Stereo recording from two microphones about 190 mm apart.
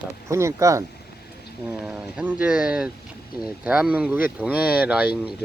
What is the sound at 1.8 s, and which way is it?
Speech, 10° right (ahead or behind).